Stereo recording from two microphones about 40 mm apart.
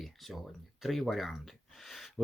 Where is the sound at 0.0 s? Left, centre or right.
Centre.